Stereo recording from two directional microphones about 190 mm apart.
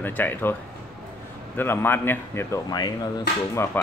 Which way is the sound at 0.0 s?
10° left (ahead or behind).